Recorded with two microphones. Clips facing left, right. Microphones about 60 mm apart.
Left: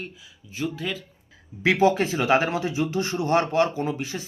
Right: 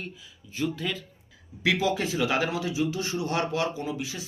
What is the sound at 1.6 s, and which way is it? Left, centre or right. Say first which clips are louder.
Speech: left 6 dB; left.